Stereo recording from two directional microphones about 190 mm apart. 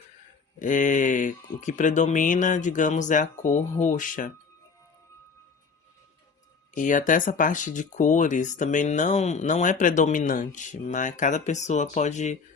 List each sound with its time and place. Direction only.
0.6 s speech: 45° left (ahead or behind)
6.7 s speech: 45° left (ahead or behind)